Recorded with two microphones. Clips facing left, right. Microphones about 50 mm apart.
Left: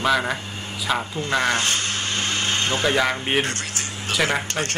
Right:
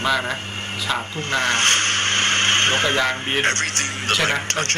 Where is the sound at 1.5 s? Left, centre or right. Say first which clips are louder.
Right 4 dB; right.